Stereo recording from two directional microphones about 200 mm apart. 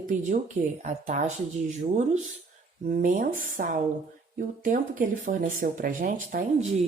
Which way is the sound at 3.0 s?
40° right (ahead or behind).